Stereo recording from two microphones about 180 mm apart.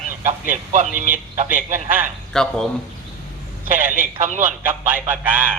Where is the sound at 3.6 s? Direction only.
50° right (ahead or behind).